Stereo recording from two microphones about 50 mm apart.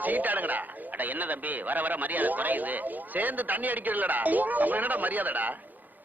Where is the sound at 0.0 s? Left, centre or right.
Right.